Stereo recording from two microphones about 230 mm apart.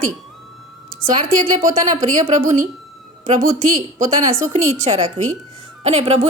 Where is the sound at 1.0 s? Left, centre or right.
Right.